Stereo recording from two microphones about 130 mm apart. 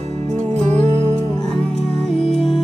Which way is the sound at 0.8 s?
40° left (ahead or behind).